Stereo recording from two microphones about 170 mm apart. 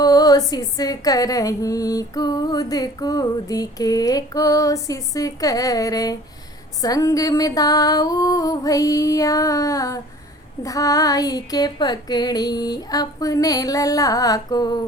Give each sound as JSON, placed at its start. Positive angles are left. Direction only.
{"t": 0.0, "sound": "female singing", "side_deg": 20}